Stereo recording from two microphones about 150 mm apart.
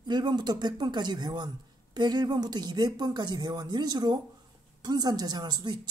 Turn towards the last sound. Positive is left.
turn(degrees=-30)  # may be behind; listen again after turning